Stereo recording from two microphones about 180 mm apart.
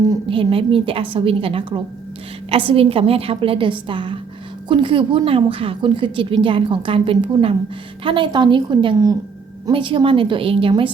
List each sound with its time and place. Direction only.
0.1 s a woman's voice: 30° right (ahead or behind)